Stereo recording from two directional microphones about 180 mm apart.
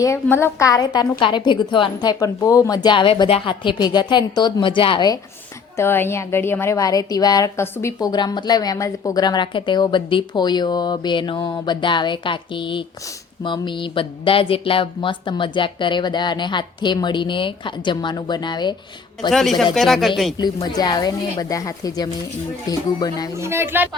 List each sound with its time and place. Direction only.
0.0 s a woman's voice: 15° left (ahead or behind)
5.7 s a woman's voice: 15° left (ahead or behind)
19.3 s speech: centre (ahead or behind)
20.4 s a woman's voice: 20° left (ahead or behind)
23.4 s speech: 15° right (ahead or behind)